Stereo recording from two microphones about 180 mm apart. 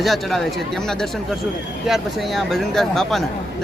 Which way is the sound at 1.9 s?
Centre (ahead or behind).